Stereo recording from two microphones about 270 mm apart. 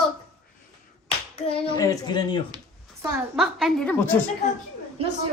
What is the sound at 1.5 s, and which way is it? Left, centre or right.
Speech, centre.